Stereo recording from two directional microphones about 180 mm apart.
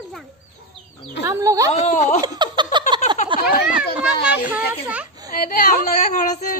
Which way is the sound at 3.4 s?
55° left (ahead or behind).